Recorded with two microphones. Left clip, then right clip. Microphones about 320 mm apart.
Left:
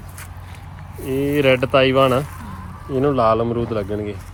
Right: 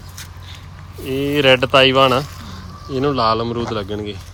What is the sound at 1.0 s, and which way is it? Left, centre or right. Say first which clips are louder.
Speech: right 2 dB; centre.